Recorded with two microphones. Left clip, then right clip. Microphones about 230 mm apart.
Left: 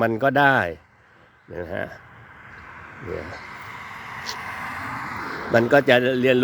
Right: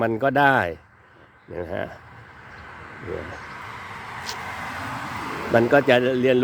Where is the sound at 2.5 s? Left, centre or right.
Left.